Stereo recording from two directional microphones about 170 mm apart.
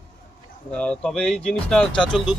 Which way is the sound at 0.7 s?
5° left (ahead or behind).